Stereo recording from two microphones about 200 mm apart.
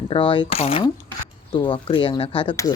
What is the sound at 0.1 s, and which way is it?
Speech, 25° left (ahead or behind).